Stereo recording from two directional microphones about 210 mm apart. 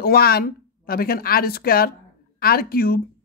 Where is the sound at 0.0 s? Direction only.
45° left (ahead or behind).